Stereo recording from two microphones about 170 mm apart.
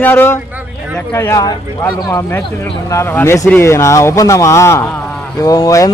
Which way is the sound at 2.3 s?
5° left (ahead or behind).